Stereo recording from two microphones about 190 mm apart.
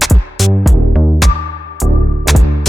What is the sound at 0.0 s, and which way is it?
Music, centre (ahead or behind).